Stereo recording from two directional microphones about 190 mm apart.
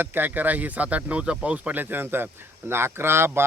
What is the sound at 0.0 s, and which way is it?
Speech, 10° right (ahead or behind).